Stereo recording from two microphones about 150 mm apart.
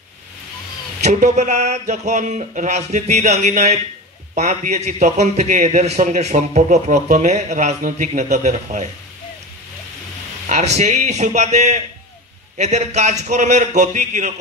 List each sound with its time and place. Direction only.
1.0 s a man's voice: 50° right (ahead or behind)
10.4 s a man's voice: 50° right (ahead or behind)